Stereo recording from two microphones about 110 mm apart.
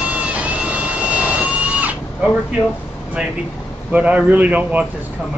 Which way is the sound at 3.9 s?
15° right (ahead or behind).